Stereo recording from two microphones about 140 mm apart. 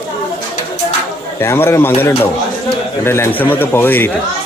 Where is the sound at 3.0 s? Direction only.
20° left (ahead or behind).